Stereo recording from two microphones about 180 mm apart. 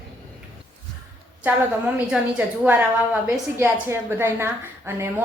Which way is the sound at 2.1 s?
5° right (ahead or behind).